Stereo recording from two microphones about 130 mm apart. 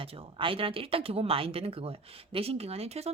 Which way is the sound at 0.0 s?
45° right (ahead or behind).